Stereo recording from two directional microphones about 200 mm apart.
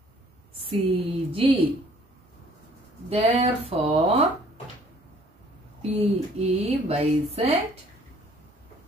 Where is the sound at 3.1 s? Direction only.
30° right (ahead or behind).